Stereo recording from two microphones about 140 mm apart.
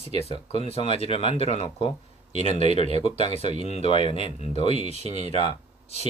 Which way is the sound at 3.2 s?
55° right (ahead or behind).